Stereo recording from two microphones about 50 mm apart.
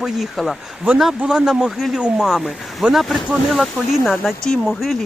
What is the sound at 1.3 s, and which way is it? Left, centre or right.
Speech, centre.